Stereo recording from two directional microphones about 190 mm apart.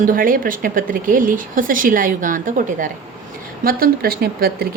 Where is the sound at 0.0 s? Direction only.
45° right (ahead or behind).